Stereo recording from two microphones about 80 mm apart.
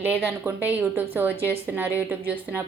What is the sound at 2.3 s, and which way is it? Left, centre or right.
Speech, centre.